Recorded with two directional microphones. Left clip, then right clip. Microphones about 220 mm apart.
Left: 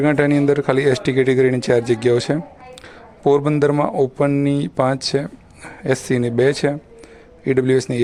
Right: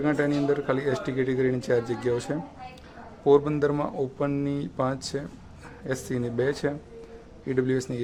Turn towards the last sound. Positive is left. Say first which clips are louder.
# left 10 dB
turn(degrees=35)  # may be behind; listen again after turning